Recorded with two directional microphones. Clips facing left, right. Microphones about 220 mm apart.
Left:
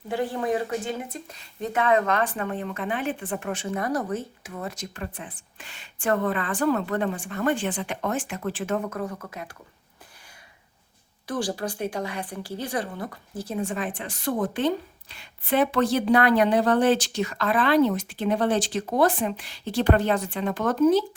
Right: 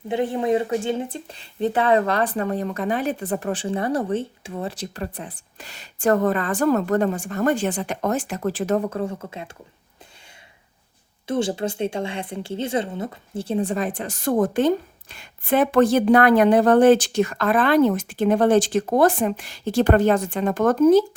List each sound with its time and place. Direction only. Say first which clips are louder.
0.1 s speech: right 5 dB; 20° right (ahead or behind)
11.3 s a woman's voice: right 5 dB; 25° right (ahead or behind); by 21.0 s 45° right (ahead or behind)